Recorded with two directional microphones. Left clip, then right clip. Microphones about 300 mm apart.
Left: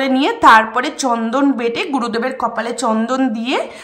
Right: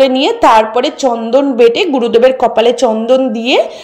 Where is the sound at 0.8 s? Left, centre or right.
Centre.